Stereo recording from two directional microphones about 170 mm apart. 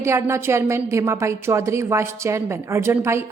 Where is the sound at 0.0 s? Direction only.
15° right (ahead or behind).